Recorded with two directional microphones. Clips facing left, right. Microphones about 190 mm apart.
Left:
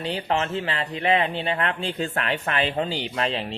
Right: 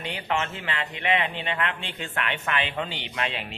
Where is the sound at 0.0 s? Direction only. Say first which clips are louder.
Left 4 dB; 35° left (ahead or behind).